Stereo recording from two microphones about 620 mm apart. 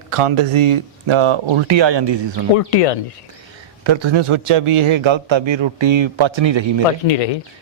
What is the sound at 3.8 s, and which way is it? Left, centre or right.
Speech, right.